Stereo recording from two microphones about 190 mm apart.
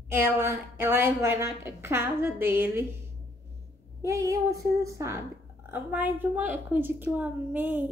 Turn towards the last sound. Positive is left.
turn(degrees=-10)  # may be behind; listen again after turning